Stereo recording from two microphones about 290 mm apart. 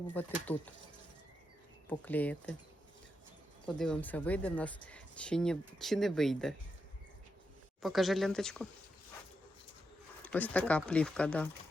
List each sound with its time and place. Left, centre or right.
0.1 s speech: centre
1.9 s speech: centre
3.7 s speech: centre
7.8 s speech: centre
10.2 s speech: centre